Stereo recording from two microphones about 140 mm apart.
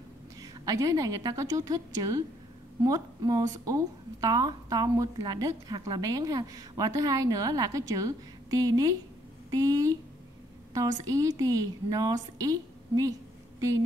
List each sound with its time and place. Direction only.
0.4 s speech: 25° right (ahead or behind)